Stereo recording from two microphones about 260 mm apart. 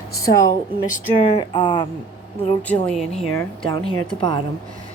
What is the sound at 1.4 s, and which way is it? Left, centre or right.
Speech, centre.